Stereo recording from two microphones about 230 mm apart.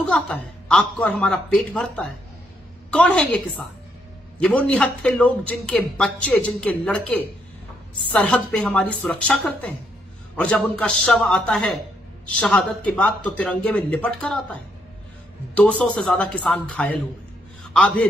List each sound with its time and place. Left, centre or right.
0.1 s a man's voice: centre